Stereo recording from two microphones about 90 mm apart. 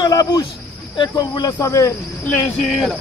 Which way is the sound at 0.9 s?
55° left (ahead or behind).